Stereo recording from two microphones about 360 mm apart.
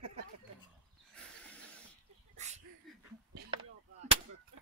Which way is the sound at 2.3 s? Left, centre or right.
Centre.